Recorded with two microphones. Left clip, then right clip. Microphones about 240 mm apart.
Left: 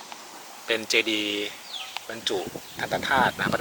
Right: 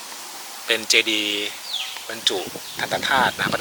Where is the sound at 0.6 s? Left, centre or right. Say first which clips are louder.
Right 5 dB; centre.